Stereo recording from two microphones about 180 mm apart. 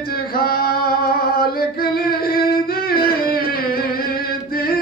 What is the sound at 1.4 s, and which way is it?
Singing, 55° left (ahead or behind).